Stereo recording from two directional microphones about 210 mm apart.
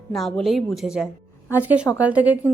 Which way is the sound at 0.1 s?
Centre (ahead or behind).